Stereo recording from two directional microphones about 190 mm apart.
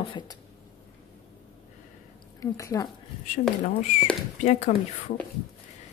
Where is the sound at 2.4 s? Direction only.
15° left (ahead or behind).